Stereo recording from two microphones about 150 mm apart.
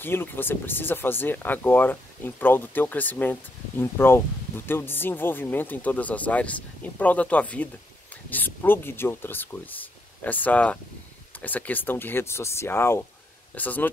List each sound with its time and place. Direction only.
0.0 s speech: 15° left (ahead or behind)